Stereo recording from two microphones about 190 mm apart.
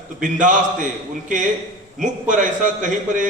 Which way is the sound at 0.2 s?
40° right (ahead or behind).